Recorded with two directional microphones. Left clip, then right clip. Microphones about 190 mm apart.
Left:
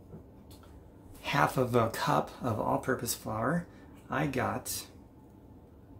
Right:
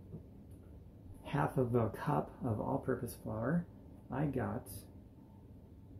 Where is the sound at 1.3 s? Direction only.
20° left (ahead or behind).